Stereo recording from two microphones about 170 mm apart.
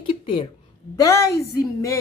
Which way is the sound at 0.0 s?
30° left (ahead or behind).